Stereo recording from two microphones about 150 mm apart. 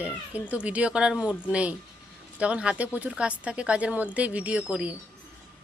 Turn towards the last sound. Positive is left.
turn(degrees=-10)  # may be behind; listen again after turning